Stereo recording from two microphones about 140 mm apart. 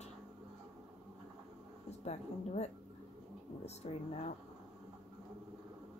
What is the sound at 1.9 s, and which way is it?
Speech, 50° left (ahead or behind).